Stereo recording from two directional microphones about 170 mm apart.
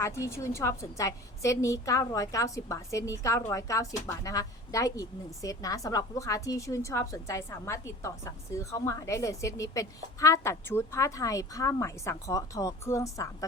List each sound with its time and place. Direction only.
0.0 s a woman's voice: 15° left (ahead or behind)